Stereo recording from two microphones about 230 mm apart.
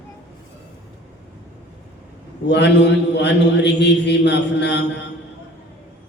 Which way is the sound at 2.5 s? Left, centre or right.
Left.